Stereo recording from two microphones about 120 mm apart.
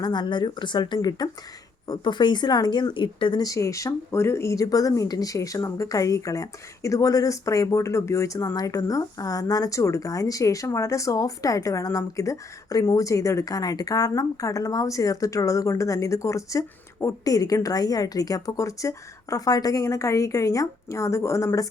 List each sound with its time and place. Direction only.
0.0 s speech: 35° left (ahead or behind)
3.4 s speech: 25° left (ahead or behind)